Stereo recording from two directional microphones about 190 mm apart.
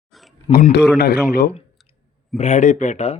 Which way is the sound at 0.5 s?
55° left (ahead or behind).